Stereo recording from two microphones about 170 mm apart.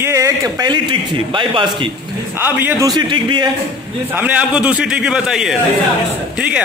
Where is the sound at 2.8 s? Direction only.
25° right (ahead or behind).